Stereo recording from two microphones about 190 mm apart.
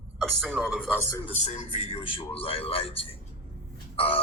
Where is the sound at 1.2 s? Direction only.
35° left (ahead or behind).